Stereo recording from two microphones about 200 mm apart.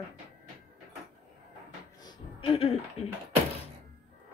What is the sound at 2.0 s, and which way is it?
Music, 25° left (ahead or behind).